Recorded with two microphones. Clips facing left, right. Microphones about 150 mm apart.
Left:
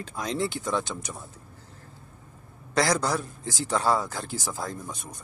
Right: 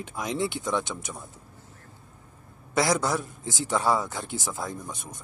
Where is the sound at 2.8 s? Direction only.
20° right (ahead or behind).